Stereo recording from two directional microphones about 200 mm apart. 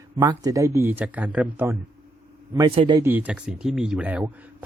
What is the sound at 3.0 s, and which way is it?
A man's voice, 10° right (ahead or behind).